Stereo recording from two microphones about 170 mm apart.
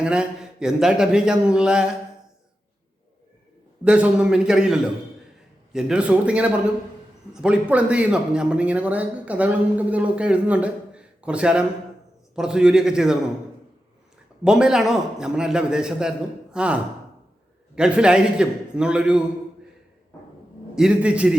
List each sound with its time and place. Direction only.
0.0 s a man's voice: 5° right (ahead or behind)
3.8 s a man's voice: 5° right (ahead or behind)
14.4 s a man's voice: 5° right (ahead or behind)
20.7 s a man's voice: 5° right (ahead or behind)